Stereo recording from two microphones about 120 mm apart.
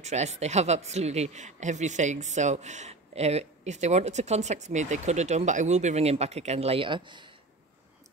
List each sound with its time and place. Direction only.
0.0 s speech: 70° right (ahead or behind); by 7.2 s 40° right (ahead or behind)